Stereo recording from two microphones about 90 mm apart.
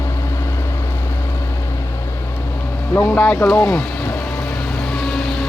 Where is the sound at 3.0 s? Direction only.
15° left (ahead or behind).